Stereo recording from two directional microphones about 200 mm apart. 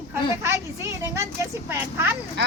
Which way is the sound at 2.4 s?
60° right (ahead or behind).